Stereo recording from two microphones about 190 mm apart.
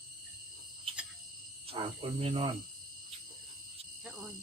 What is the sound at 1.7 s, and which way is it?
Speech, 30° right (ahead or behind).